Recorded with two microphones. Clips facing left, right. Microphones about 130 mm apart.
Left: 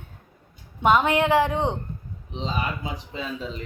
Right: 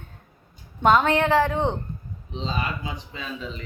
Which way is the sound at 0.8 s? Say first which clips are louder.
Right 1 dB; 10° left (ahead or behind).